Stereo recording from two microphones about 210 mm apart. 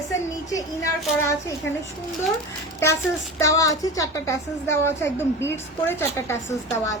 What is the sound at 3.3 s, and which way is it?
A woman's voice, 15° left (ahead or behind).